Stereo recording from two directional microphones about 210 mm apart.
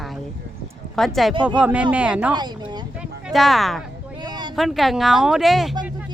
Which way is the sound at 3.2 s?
Centre (ahead or behind).